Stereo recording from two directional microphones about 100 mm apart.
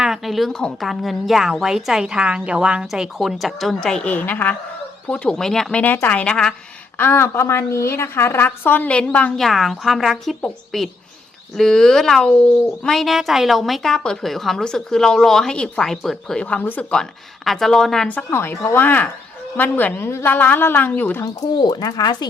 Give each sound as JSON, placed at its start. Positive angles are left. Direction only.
{"t": 0.0, "sound": "speech", "side_deg": -5}
{"t": 5.8, "sound": "speech", "side_deg": 20}
{"t": 7.0, "sound": "a woman's voice", "side_deg": 25}
{"t": 9.4, "sound": "speech", "side_deg": 0}
{"t": 17.0, "sound": "speech", "side_deg": 5}
{"t": 18.3, "sound": "a woman's voice", "side_deg": 25}
{"t": 21.6, "sound": "speech", "side_deg": 40}